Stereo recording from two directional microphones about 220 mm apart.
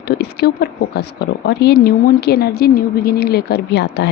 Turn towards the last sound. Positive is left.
turn(degrees=50)  # may be behind; listen again after turning